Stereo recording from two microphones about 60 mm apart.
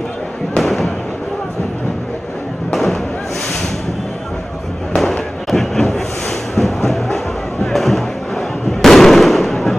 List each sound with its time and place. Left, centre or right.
2.7 s fireworks: centre
4.9 s fireworks: centre
6.5 s music: centre
7.6 s fireworks: centre